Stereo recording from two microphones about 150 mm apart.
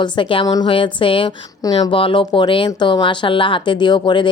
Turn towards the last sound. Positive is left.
turn(degrees=30)  # may be behind; listen again after turning